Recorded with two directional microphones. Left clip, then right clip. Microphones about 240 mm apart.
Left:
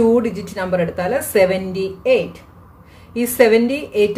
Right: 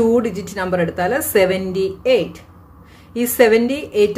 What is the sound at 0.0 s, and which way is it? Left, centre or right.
A woman's voice, centre.